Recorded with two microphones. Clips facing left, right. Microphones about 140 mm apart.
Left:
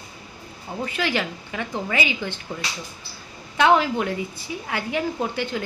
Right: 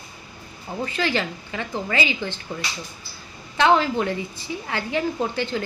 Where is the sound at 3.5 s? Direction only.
10° left (ahead or behind).